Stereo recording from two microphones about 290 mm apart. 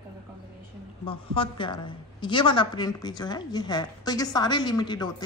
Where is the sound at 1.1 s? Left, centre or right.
Centre.